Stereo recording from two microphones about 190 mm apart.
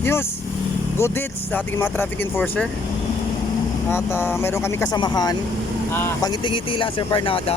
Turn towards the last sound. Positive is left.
turn(degrees=30)  # may be behind; listen again after turning